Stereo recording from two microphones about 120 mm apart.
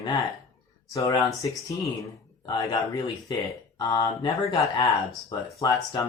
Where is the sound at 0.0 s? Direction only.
30° left (ahead or behind).